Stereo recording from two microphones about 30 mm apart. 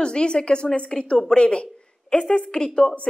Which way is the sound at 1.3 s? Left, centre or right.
Left.